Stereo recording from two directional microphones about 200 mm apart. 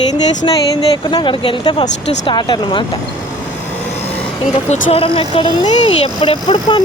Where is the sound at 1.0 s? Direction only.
25° left (ahead or behind).